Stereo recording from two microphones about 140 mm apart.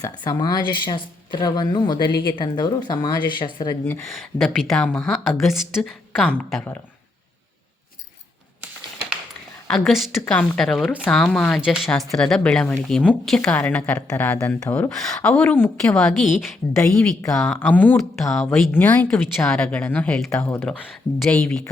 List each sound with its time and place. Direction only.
0.0 s speech: 25° left (ahead or behind)
4.0 s a woman's voice: centre (ahead or behind)
9.6 s a woman's voice: centre (ahead or behind)
16.1 s a woman's voice: centre (ahead or behind)
17.2 s a woman's voice: 20° left (ahead or behind); by 18.6 s centre (ahead or behind)
18.7 s a woman's voice: 10° left (ahead or behind)